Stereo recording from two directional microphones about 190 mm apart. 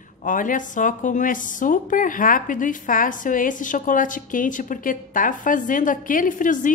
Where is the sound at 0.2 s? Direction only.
45° left (ahead or behind).